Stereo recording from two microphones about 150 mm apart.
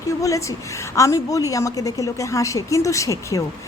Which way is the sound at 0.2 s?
20° left (ahead or behind).